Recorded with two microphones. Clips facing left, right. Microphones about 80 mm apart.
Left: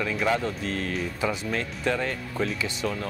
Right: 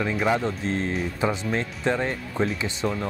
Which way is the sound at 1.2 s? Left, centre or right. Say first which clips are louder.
Right 3 dB; right.